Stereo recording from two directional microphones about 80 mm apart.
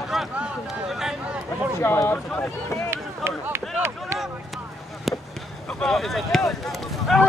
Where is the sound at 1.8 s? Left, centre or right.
Left.